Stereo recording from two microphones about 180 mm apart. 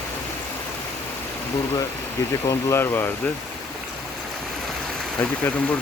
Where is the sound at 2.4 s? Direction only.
15° left (ahead or behind).